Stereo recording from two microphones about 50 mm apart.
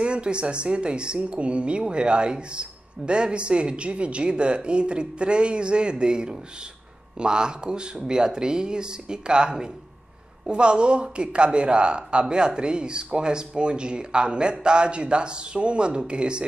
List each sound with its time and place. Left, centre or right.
0.0 s speech: centre